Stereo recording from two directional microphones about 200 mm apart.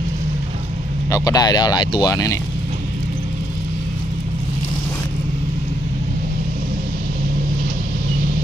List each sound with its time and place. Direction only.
1.1 s speech: 20° left (ahead or behind)